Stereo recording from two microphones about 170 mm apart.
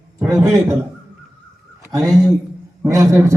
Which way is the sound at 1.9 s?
20° right (ahead or behind).